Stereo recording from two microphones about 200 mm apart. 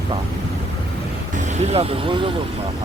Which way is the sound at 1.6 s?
30° right (ahead or behind).